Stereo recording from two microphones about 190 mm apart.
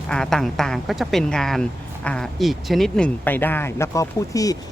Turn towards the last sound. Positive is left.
turn(degrees=20)  # may be behind; listen again after turning